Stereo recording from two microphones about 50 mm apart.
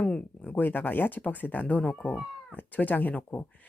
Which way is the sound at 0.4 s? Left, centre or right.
Left.